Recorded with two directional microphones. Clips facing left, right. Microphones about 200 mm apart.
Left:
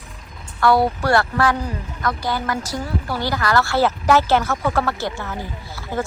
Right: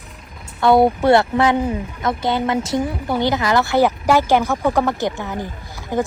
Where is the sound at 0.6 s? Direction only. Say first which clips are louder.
Right 4 dB; 20° right (ahead or behind).